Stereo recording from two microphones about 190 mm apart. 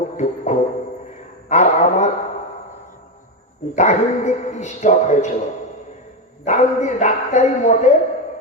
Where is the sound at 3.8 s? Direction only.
35° left (ahead or behind).